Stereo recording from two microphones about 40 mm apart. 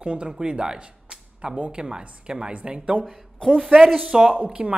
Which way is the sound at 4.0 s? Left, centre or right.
Centre.